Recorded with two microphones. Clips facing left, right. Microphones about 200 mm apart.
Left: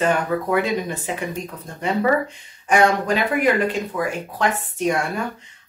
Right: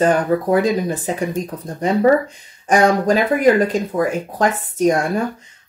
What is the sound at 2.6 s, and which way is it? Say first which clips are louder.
Speech: right 3 dB; 40° right (ahead or behind).